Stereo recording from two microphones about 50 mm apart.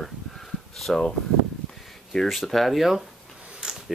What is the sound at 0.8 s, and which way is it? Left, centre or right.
Speech, centre.